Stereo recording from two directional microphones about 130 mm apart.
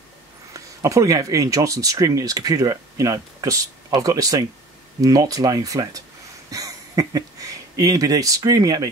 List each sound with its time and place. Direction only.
0.5 s speech: 25° right (ahead or behind)